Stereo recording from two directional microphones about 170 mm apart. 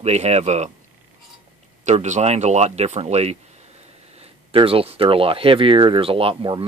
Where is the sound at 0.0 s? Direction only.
40° right (ahead or behind).